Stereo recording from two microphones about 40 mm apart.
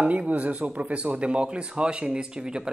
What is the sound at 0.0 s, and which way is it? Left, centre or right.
Speech, right.